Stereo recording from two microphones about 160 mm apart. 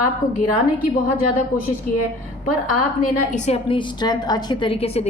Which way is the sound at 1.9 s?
60° left (ahead or behind).